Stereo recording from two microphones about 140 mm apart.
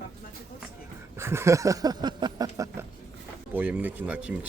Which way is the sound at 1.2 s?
20° right (ahead or behind).